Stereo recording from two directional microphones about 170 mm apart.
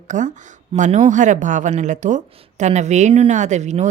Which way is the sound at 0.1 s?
45° right (ahead or behind).